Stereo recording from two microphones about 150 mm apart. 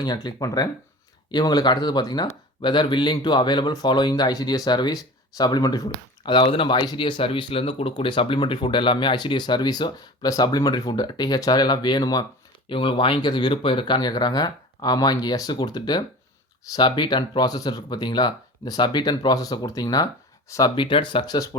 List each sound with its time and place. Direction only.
0.0 s speech: 30° left (ahead or behind)
20.7 s speech: 35° left (ahead or behind)